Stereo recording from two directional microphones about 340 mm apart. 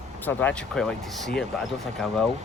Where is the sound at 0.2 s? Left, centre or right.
Centre.